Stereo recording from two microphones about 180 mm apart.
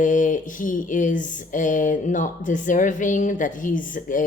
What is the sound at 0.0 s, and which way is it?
Speech, 45° left (ahead or behind).